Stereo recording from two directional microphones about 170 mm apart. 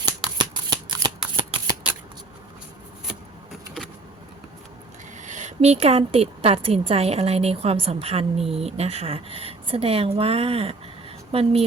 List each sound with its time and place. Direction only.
0.0 s shuffling cards: 25° right (ahead or behind)
5.2 s a woman's voice: 45° right (ahead or behind)